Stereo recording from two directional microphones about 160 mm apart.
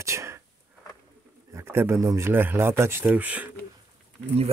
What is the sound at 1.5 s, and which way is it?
Speech, 15° right (ahead or behind).